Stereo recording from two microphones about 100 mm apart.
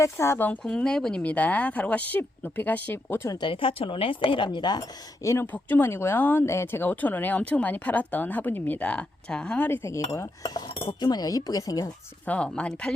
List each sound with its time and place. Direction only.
0.0 s cutlery: 25° left (ahead or behind)
0.6 s speech: 10° left (ahead or behind)
3.2 s speech: 45° left (ahead or behind)
3.5 s a woman's voice: 65° left (ahead or behind); by 4.9 s 45° left (ahead or behind)
5.2 s speech: 30° left (ahead or behind)
5.5 s speech: 20° left (ahead or behind)
9.6 s cutlery: 25° left (ahead or behind)
11.0 s speech: 40° left (ahead or behind)
12.2 s speech: 15° left (ahead or behind)